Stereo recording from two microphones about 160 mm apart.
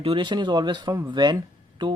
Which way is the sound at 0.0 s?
30° right (ahead or behind).